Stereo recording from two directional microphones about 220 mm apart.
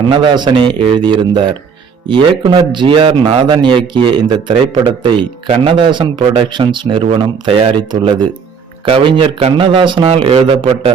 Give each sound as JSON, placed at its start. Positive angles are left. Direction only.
{"t": 0.1, "sound": "speech", "side_deg": -20}